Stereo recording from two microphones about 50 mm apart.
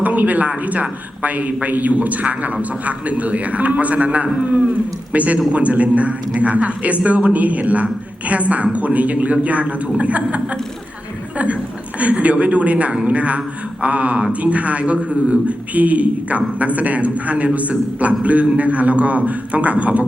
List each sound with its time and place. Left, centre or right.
0.0 s a man's voice: right
11.9 s a man's voice: right